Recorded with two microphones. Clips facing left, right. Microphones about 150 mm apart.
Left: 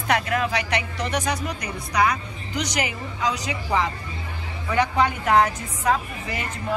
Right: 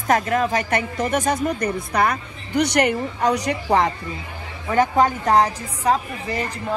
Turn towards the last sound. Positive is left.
turn(degrees=-35)  # may be behind; listen again after turning